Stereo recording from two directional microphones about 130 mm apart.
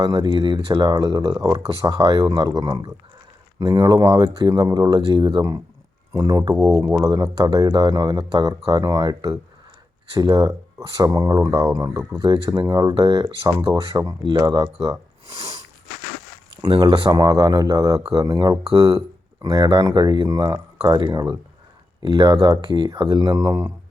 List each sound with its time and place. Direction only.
0.0 s speech: 30° right (ahead or behind)
15.4 s sniff: 25° right (ahead or behind)
16.8 s speech: 40° right (ahead or behind)